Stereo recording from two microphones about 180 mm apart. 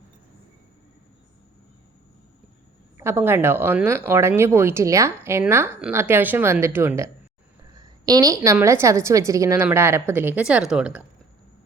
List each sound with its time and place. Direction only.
3.0 s speech: 15° right (ahead or behind)